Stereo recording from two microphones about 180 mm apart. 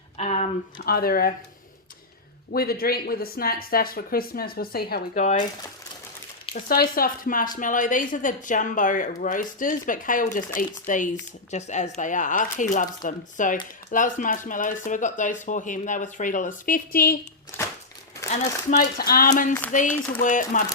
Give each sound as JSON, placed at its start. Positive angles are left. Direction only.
{"t": 0.2, "sound": "speech", "side_deg": 40}
{"t": 0.9, "sound": "speech", "side_deg": 55}
{"t": 2.5, "sound": "speech", "side_deg": 55}
{"t": 6.5, "sound": "speech", "side_deg": 55}
{"t": 17.5, "sound": "a sound", "side_deg": 10}
{"t": 18.3, "sound": "speech", "side_deg": 40}
{"t": 18.9, "sound": "speech", "side_deg": 55}